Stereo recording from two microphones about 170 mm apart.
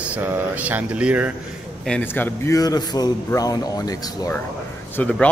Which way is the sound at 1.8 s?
10° left (ahead or behind).